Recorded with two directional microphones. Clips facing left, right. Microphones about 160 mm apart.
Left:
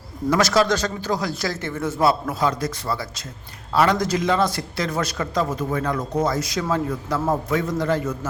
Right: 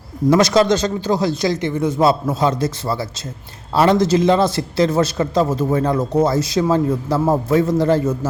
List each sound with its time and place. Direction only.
0.3 s a man's voice: 20° right (ahead or behind)